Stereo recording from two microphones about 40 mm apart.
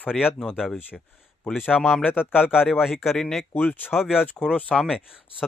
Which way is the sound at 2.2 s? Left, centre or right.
Left.